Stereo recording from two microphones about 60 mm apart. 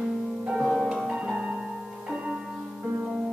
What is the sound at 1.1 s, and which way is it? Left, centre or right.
Music, centre.